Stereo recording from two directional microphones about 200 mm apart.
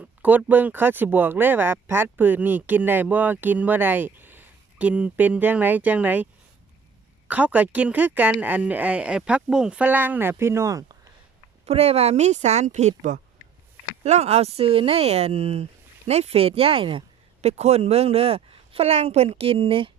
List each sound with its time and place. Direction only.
0.0 s speech: 10° right (ahead or behind)
7.3 s speech: 10° right (ahead or behind)
11.6 s a woman's voice: 30° right (ahead or behind)